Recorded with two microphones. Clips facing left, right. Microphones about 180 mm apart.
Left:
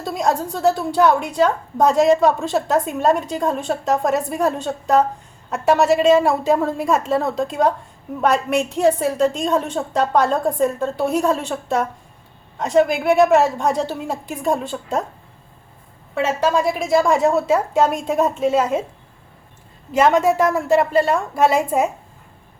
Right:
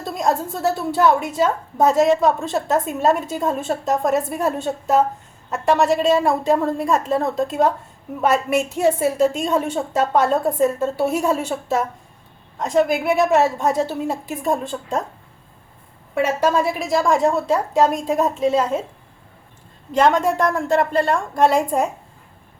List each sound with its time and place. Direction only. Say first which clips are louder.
0.0 s a woman's voice: left 1 dB; centre (ahead or behind)
16.1 s a woman's voice: even; 10° right (ahead or behind); by 18.8 s 5° left (ahead or behind)
19.9 s a woman's voice: left 1 dB; 5° left (ahead or behind)